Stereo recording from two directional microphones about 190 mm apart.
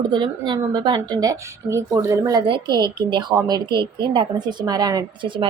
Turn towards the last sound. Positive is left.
turn(degrees=-25)  # may be behind; listen again after turning